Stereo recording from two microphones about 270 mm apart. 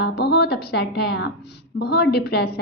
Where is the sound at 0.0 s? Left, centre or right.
Left.